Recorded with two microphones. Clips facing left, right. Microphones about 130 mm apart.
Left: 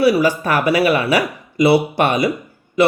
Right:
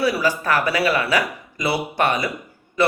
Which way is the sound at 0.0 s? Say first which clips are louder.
Left 6 dB; 20° left (ahead or behind).